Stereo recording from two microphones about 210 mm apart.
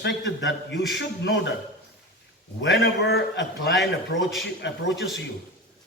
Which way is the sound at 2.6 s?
55° left (ahead or behind).